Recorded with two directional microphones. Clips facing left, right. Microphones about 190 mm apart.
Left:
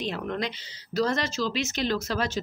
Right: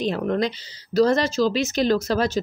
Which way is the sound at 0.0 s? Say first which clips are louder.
Right 8 dB; 40° right (ahead or behind).